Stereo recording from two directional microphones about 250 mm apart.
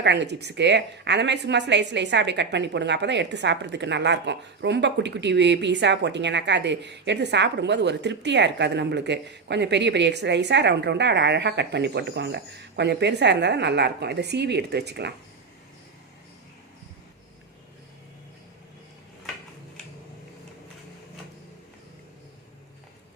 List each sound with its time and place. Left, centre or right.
0.0 s a woman's voice: right